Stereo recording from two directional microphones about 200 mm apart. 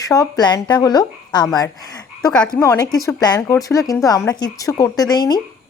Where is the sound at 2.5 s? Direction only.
15° left (ahead or behind).